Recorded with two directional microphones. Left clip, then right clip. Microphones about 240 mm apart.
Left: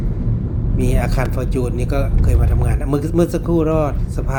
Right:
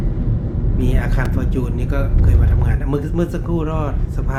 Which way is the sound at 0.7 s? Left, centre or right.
Centre.